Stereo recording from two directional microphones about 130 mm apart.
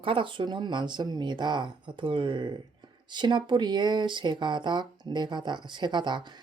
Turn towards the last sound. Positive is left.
turn(degrees=-35)  # may be behind; listen again after turning